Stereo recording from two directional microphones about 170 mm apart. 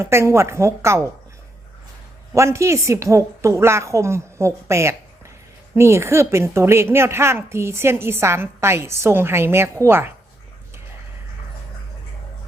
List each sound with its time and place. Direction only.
0.0 s a woman's voice: 15° right (ahead or behind)
2.3 s a woman's voice: 15° right (ahead or behind)